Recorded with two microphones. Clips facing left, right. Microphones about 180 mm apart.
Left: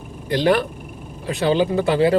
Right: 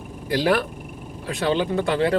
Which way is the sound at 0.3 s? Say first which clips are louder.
Left 3 dB; 5° right (ahead or behind).